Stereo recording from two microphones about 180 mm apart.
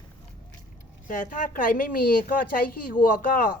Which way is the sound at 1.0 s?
45° left (ahead or behind).